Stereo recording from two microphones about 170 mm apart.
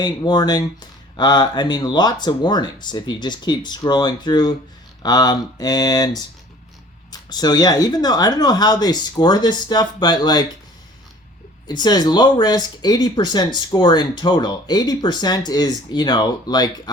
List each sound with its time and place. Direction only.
0.0 s speech: 25° left (ahead or behind)
11.7 s speech: 25° left (ahead or behind)